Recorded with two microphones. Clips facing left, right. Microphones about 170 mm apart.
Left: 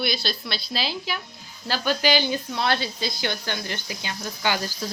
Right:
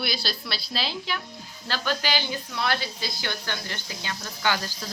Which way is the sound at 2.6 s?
25° left (ahead or behind).